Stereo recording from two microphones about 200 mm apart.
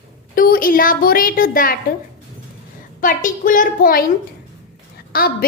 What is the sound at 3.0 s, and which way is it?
A woman's voice, 40° left (ahead or behind).